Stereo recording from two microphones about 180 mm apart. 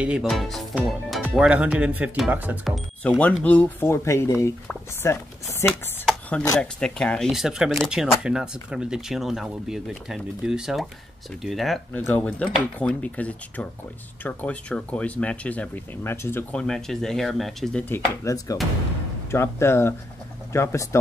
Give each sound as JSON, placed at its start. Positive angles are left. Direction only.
{"t": 0.0, "sound": "speech", "side_deg": -5}
{"t": 5.7, "sound": "a sound", "side_deg": 0}
{"t": 6.6, "sound": "speech", "side_deg": 5}